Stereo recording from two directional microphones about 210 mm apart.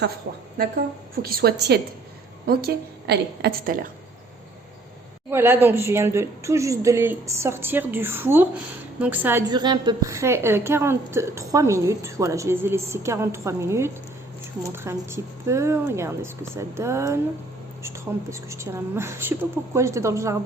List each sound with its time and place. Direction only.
0.3 s a woman's voice: 50° right (ahead or behind)
5.3 s a woman's voice: 10° right (ahead or behind)
9.5 s a woman's voice: 20° right (ahead or behind)